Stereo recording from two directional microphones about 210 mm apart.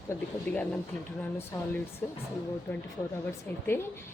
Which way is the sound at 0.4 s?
5° left (ahead or behind).